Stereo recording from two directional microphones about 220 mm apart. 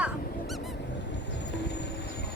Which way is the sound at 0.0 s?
Centre (ahead or behind).